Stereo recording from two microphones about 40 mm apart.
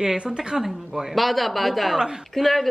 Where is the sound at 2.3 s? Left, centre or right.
Centre.